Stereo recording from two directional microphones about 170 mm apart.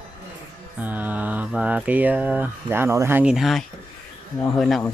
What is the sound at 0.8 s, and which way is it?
Speech, 10° right (ahead or behind).